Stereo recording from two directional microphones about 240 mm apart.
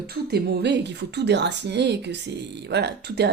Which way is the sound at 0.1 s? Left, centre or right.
Right.